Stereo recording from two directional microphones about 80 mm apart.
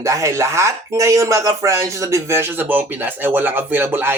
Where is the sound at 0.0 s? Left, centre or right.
Right.